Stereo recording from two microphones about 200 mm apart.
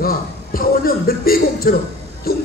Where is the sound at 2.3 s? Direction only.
50° left (ahead or behind).